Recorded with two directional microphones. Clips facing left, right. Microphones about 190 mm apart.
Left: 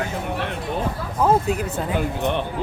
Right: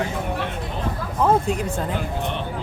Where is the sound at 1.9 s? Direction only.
55° left (ahead or behind).